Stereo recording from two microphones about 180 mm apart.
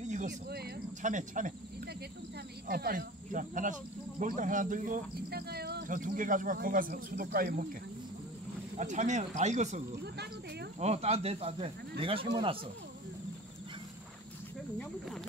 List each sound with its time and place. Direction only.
0.0 s a sound: 45° right (ahead or behind)
0.3 s speech: 60° right (ahead or behind)
1.0 s speech: 45° right (ahead or behind)
2.7 s speech: 60° right (ahead or behind)
8.7 s speech: 40° right (ahead or behind)
10.0 s cricket: 70° right (ahead or behind)
10.8 s speech: 35° right (ahead or behind)